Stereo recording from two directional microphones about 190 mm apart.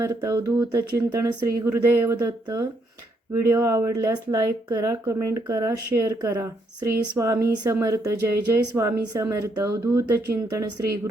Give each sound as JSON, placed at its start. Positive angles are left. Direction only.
{"t": 0.0, "sound": "a woman's voice", "side_deg": -15}